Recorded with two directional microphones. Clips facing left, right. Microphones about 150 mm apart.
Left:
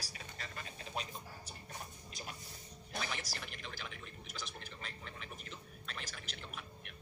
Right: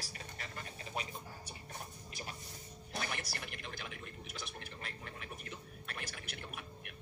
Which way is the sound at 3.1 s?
60° right (ahead or behind).